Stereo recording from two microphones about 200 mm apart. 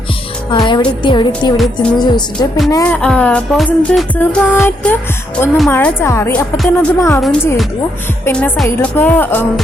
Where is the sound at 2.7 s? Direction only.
10° left (ahead or behind).